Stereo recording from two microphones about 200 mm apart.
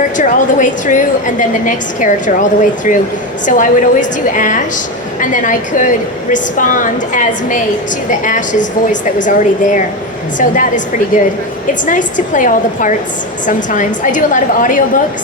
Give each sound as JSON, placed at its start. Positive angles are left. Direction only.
{"t": 0.0, "sound": "a woman's voice", "side_deg": 40}
{"t": 11.7, "sound": "a woman's voice", "side_deg": 40}